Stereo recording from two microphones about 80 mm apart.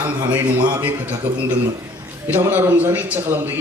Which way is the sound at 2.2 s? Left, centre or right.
Right.